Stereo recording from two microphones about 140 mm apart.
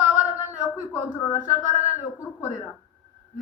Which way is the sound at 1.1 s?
20° left (ahead or behind).